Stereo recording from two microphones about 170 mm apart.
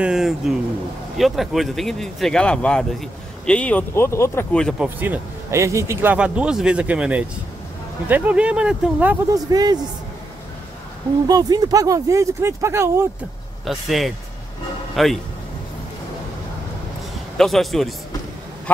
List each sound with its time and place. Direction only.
0.0 s speech: 5° right (ahead or behind); by 4.5 s 15° left (ahead or behind)
4.6 s speech: centre (ahead or behind)
4.8 s speech: 10° right (ahead or behind)
9.3 s speech: 20° right (ahead or behind)
11.2 s speech: 20° right (ahead or behind)
13.7 s speech: centre (ahead or behind)
17.4 s speech: centre (ahead or behind)